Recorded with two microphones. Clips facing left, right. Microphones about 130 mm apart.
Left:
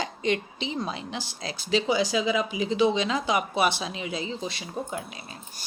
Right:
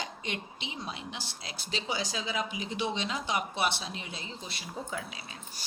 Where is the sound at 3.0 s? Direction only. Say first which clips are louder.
Left 7 dB; 90° left.